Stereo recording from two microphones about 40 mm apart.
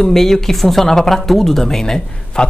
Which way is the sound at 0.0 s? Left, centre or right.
Centre.